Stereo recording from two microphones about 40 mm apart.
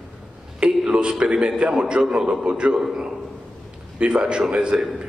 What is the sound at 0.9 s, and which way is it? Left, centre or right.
A man's voice, right.